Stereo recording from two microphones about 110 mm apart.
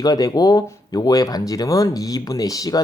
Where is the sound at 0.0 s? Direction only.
35° left (ahead or behind).